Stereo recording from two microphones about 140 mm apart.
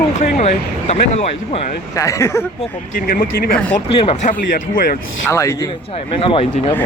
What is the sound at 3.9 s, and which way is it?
Speech, 40° left (ahead or behind).